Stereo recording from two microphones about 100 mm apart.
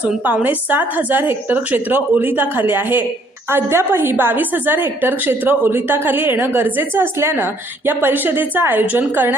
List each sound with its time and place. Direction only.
0.4 s a woman's voice: 20° right (ahead or behind)